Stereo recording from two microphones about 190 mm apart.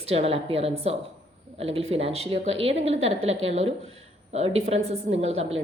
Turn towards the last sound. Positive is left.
turn(degrees=-35)  # may be behind; listen again after turning